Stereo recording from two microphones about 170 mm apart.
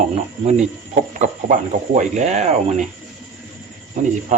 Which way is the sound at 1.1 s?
45° right (ahead or behind).